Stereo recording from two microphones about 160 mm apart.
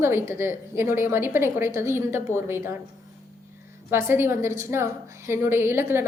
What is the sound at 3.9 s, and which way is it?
A woman's voice, 15° right (ahead or behind).